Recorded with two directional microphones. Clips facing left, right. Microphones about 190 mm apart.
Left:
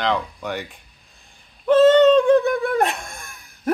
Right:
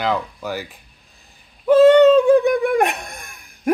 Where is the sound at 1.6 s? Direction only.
10° right (ahead or behind).